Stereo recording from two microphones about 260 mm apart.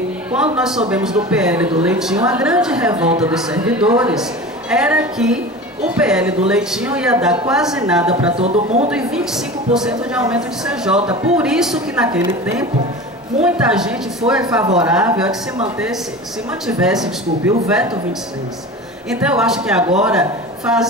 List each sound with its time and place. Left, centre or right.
0.3 s a man's voice: centre
8.1 s speech: right
8.9 s a man's voice: centre
13.4 s a man's voice: centre
16.6 s a man's voice: centre
19.0 s a man's voice: centre